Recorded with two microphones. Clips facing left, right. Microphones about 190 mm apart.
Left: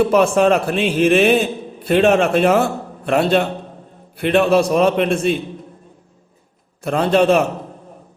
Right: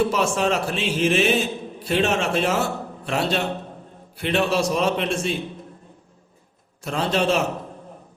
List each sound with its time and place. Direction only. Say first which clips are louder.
0.1 s a man's voice: left 8 dB; 55° left (ahead or behind)
6.8 s a man's voice: left 7 dB; 55° left (ahead or behind)